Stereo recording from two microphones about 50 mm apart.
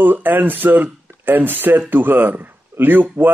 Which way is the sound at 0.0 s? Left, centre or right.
Right.